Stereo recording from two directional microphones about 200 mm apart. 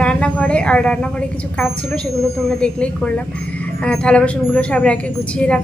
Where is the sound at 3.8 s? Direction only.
5° left (ahead or behind).